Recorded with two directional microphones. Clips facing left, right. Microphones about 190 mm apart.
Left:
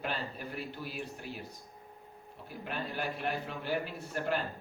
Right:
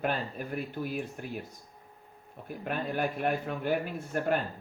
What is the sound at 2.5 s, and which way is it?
Speech, 50° right (ahead or behind).